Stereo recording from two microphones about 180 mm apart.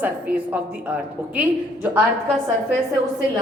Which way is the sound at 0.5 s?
10° right (ahead or behind).